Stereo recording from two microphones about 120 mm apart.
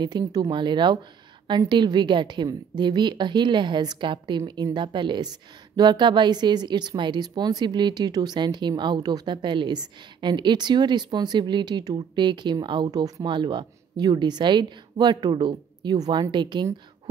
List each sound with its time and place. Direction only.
0.0 s a woman's voice: 35° right (ahead or behind)